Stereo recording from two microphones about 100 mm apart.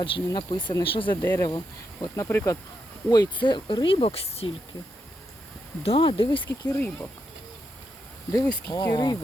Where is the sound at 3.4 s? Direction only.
55° left (ahead or behind); by 4.5 s 75° left (ahead or behind).